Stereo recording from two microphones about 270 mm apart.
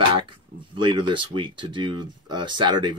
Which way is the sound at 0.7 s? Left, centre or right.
Centre.